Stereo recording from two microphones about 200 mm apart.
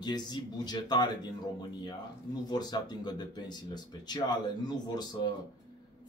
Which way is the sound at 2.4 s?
20° left (ahead or behind).